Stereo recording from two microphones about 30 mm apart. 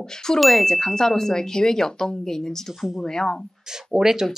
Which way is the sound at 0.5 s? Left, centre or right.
Centre.